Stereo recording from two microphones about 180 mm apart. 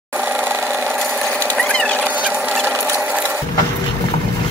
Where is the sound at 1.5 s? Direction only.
5° left (ahead or behind).